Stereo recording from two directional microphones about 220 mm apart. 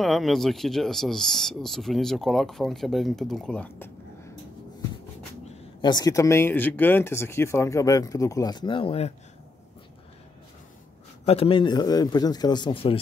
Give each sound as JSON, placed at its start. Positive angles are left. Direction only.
{"t": 0.0, "sound": "speech", "side_deg": 0}
{"t": 5.4, "sound": "speech", "side_deg": 20}
{"t": 11.2, "sound": "a man's voice", "side_deg": 25}